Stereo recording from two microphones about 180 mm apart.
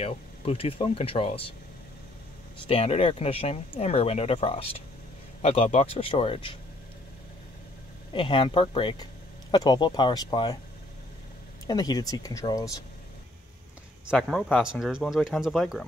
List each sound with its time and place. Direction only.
0.0 s speech: 30° left (ahead or behind)
2.6 s speech: 30° left (ahead or behind)
8.1 s speech: 25° left (ahead or behind)
11.6 s speech: 20° left (ahead or behind)
14.0 s speech: centre (ahead or behind)